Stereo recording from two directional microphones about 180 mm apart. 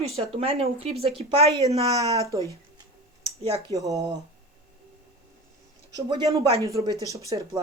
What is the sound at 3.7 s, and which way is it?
Speech, 20° right (ahead or behind).